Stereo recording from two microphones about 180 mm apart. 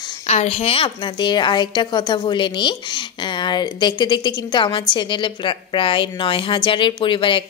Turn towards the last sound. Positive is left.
turn(degrees=30)  # may be behind; listen again after turning